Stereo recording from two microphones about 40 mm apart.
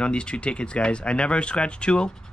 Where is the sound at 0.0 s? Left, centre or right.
Left.